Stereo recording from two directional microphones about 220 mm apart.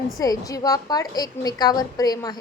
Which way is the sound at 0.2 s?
15° left (ahead or behind).